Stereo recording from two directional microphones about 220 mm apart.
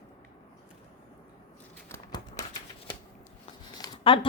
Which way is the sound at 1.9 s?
15° left (ahead or behind).